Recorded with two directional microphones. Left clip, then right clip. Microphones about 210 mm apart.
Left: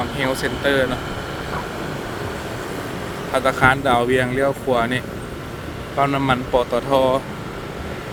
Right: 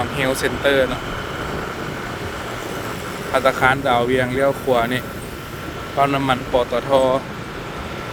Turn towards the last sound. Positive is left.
turn(degrees=0)  # may be behind; listen again after turning